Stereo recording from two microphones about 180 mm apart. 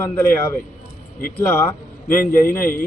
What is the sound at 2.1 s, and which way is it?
Speech, 50° left (ahead or behind).